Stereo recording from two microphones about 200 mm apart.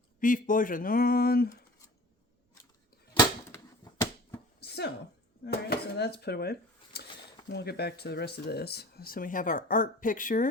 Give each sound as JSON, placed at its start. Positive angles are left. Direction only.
{"t": 0.2, "sound": "speech", "side_deg": 40}
{"t": 4.6, "sound": "a sound", "side_deg": 55}
{"t": 5.5, "sound": "speech", "side_deg": 55}